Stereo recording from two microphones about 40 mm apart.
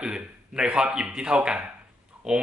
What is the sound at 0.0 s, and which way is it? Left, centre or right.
A man's voice, right.